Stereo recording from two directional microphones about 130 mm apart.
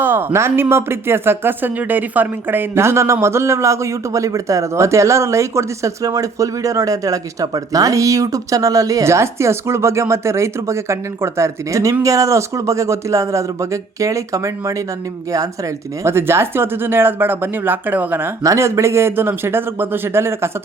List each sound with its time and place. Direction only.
0.0 s speech: 15° right (ahead or behind)
16.0 s speech: 20° right (ahead or behind)